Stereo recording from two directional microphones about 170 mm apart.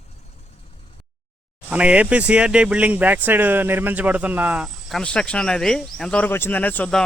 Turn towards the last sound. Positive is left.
turn(degrees=5)  # may be behind; listen again after turning